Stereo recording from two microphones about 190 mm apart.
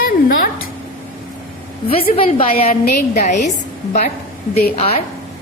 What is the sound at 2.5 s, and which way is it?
Speech, 50° left (ahead or behind).